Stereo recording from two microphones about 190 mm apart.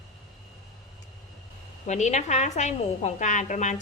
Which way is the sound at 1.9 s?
40° left (ahead or behind).